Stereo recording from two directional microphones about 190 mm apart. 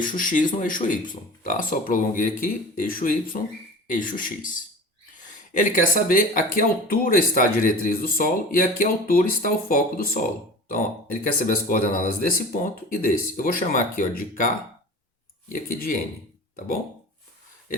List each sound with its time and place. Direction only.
0.0 s speech: 45° left (ahead or behind)
15.5 s speech: 45° left (ahead or behind)